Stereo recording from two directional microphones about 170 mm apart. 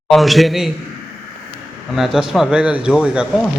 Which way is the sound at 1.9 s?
Centre (ahead or behind).